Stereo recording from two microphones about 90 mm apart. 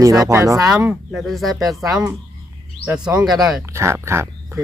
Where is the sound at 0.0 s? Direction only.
40° right (ahead or behind).